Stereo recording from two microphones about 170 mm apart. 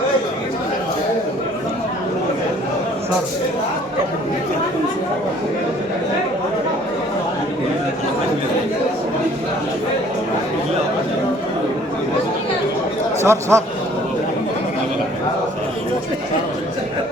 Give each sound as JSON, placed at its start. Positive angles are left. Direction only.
{"t": 13.2, "sound": "a man's voice", "side_deg": -15}